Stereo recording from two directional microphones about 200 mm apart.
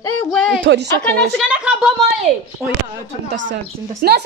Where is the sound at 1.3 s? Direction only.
5° right (ahead or behind).